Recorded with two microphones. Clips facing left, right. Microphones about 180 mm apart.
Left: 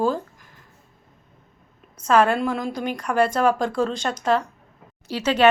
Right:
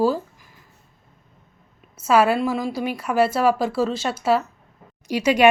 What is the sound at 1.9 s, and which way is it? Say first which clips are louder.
A woman's voice: right 1 dB; 5° right (ahead or behind).